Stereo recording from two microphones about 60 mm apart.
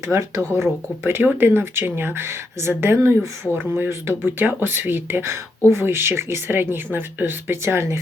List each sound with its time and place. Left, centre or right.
0.5 s speech: right
5.2 s a woman's voice: right